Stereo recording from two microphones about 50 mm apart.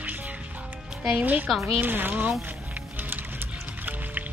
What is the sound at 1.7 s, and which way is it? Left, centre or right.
Speech, right.